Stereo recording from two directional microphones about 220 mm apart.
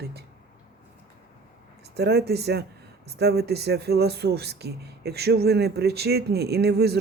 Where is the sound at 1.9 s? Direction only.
45° right (ahead or behind).